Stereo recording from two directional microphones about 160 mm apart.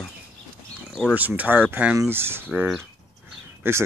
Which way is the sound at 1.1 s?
10° right (ahead or behind).